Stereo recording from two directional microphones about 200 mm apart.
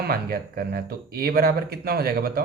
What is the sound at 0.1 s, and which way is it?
Speech, 50° right (ahead or behind).